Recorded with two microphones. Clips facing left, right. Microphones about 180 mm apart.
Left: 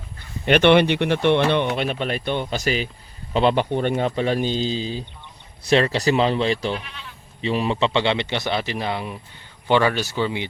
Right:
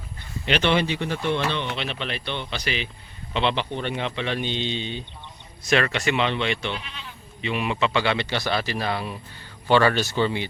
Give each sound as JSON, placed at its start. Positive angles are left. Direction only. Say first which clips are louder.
{"t": 0.4, "sound": "speech", "louder": "left 7 dB", "side_deg": 55}